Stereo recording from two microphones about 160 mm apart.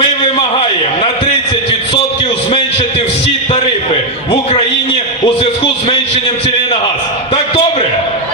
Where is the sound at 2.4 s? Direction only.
40° left (ahead or behind).